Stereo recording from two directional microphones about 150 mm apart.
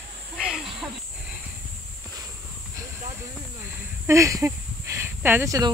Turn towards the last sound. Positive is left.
turn(degrees=-25)  # may be behind; listen again after turning